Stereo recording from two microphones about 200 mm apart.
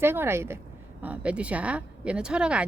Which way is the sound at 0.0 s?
10° right (ahead or behind).